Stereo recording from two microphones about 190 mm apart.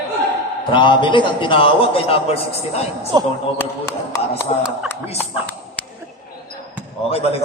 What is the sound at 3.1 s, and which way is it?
Speech, 25° right (ahead or behind).